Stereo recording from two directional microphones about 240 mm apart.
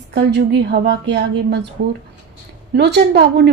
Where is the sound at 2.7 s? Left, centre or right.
Right.